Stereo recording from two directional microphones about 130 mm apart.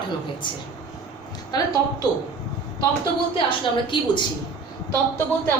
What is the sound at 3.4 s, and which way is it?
Speech, 40° left (ahead or behind).